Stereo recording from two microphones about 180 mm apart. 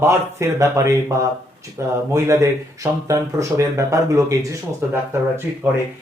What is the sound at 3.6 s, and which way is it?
Speech, 15° right (ahead or behind).